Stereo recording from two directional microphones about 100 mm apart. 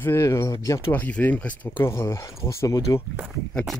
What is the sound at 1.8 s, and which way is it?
Speech, 25° left (ahead or behind).